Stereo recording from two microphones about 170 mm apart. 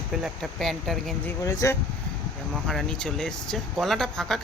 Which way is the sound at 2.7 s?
Centre (ahead or behind).